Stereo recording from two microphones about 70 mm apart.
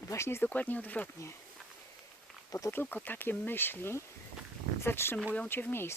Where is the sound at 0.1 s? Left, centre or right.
Left.